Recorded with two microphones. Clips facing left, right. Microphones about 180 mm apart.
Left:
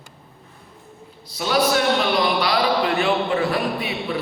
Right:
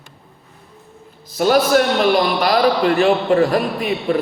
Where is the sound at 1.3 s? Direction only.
45° right (ahead or behind).